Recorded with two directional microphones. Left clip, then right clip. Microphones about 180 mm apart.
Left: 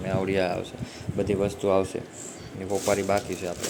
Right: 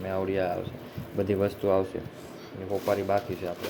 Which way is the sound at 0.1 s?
20° left (ahead or behind).